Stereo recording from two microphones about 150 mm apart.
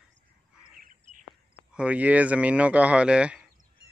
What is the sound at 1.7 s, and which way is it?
Speech, 10° right (ahead or behind).